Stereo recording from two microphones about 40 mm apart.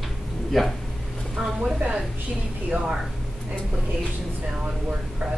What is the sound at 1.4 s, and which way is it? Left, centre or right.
Speech, right.